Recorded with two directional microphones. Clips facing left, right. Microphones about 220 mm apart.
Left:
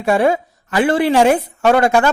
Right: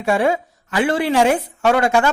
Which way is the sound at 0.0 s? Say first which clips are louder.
Left 3 dB; 40° left (ahead or behind).